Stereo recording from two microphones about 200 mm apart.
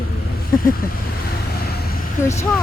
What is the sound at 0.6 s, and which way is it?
Speech, 45° left (ahead or behind).